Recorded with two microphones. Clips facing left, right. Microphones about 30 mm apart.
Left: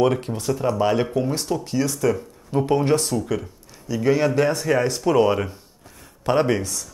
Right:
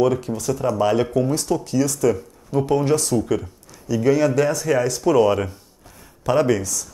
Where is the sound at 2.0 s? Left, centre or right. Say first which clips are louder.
Right 1 dB; centre.